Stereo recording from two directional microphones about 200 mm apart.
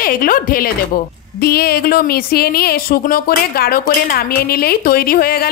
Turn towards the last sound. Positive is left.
turn(degrees=50)  # may be behind; listen again after turning